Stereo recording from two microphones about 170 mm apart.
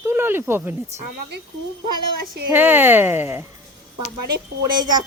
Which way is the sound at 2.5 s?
10° right (ahead or behind).